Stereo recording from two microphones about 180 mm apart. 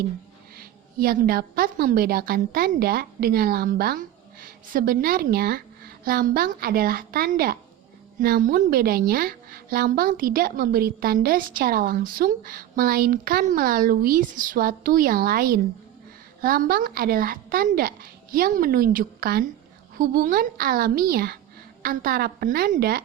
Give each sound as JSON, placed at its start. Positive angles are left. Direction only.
{"t": 0.5, "sound": "a woman's voice", "side_deg": -55}